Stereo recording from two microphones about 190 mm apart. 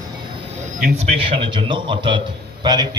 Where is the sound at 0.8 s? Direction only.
35° right (ahead or behind).